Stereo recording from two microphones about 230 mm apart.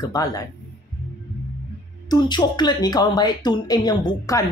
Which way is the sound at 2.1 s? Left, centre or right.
Centre.